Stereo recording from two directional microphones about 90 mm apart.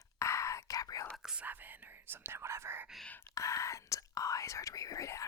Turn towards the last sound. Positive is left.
turn(degrees=35)  # may be behind; listen again after turning